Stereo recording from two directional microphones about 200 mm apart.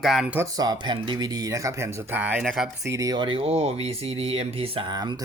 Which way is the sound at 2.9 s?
20° right (ahead or behind).